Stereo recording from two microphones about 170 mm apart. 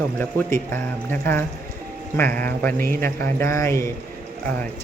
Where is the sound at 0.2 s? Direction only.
15° left (ahead or behind).